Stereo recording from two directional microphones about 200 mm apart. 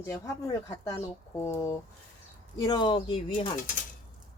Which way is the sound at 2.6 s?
20° left (ahead or behind).